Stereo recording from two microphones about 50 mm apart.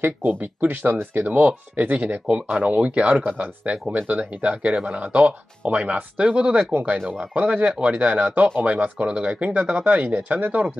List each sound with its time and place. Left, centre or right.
0.0 s speech: right
1.2 s speech: right
6.7 s speech: right